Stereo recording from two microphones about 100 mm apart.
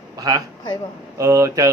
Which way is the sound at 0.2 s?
35° right (ahead or behind).